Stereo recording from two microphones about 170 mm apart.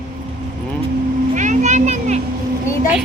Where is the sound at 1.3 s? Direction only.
45° right (ahead or behind).